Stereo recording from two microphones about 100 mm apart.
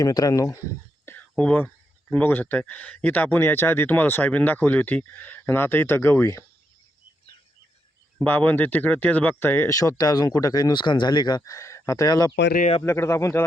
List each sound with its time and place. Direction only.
0.0 s speech: 35° left (ahead or behind)
1.4 s speech: 15° left (ahead or behind)
8.2 s speech: 15° left (ahead or behind)
9.6 s speech: 35° left (ahead or behind)